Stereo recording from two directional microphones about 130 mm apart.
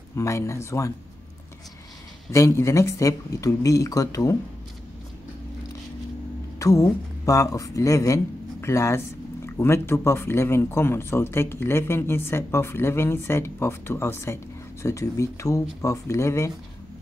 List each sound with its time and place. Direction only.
0.1 s speech: 20° left (ahead or behind)
2.3 s speech: 25° left (ahead or behind)
6.6 s speech: 25° left (ahead or behind)